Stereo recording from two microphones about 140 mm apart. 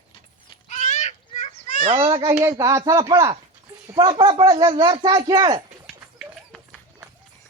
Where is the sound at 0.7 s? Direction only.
55° left (ahead or behind).